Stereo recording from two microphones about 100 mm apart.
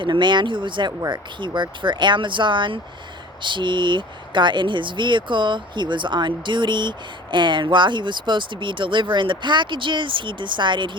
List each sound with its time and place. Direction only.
0.0 s speech: 50° right (ahead or behind)